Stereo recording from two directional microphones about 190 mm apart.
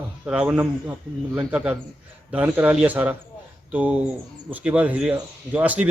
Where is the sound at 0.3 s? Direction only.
5° right (ahead or behind).